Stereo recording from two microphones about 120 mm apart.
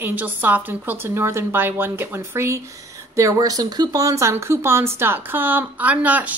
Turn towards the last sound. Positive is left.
turn(degrees=-10)  # may be behind; listen again after turning